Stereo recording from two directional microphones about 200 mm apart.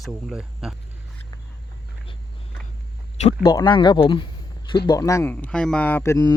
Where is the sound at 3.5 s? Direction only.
20° left (ahead or behind).